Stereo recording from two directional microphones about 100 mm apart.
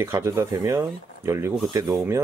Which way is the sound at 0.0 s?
30° right (ahead or behind).